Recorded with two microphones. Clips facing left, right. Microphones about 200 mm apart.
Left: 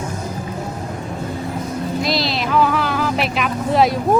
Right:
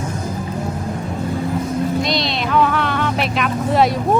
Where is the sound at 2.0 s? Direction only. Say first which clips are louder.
Even; centre (ahead or behind).